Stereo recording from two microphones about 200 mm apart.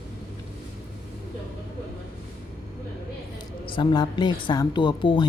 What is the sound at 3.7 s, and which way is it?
Speech, 25° left (ahead or behind).